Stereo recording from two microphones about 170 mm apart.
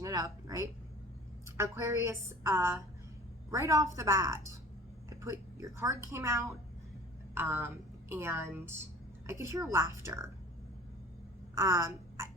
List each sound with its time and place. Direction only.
0.0 s a sound: 20° right (ahead or behind)
1.5 s a woman's voice: 15° right (ahead or behind)
11.5 s a woman's voice: 20° right (ahead or behind)